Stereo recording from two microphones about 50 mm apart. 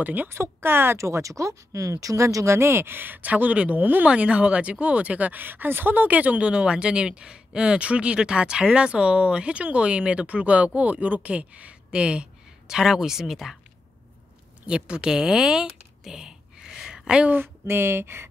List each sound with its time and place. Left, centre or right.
0.0 s speech: right
0.3 s speech: right
0.9 s speech: right
4.1 s speech: right
11.2 s a sound: right
12.7 s speech: centre
14.7 s speech: centre
17.3 s speech: right